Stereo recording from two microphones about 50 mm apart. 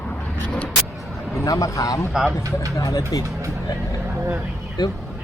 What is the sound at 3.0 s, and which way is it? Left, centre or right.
Speech, right.